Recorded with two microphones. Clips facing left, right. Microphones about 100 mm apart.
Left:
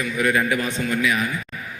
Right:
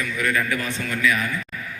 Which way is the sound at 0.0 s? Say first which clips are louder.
Left 3 dB; 20° left (ahead or behind).